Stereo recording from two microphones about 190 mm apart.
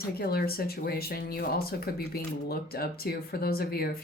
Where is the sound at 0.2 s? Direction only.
55° left (ahead or behind).